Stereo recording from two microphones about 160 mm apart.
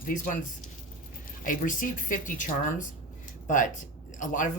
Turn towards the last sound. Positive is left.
turn(degrees=55)  # may be behind; listen again after turning